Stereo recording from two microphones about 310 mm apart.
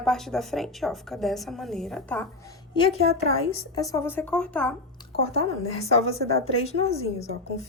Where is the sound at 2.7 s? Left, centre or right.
Centre.